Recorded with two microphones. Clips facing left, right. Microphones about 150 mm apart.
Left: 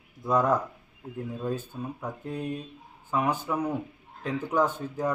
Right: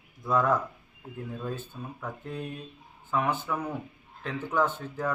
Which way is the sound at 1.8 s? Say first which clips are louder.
Left 3 dB; 15° left (ahead or behind).